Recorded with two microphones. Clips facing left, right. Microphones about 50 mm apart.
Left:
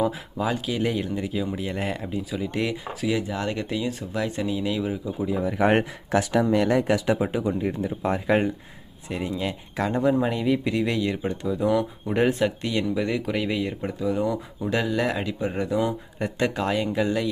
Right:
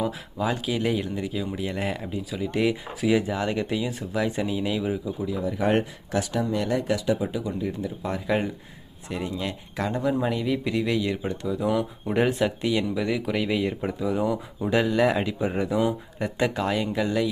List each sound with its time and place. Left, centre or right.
0.0 s speech: centre
5.4 s speech: left
7.3 s speech: left
9.0 s speech: centre